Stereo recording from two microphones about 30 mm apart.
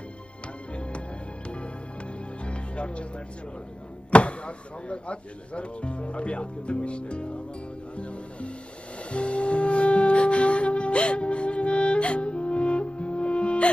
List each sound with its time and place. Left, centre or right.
2.4 s music: left
4.1 s speech: left
9.1 s music: left